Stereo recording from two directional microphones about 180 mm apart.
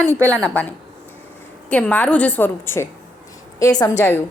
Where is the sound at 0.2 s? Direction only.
15° right (ahead or behind).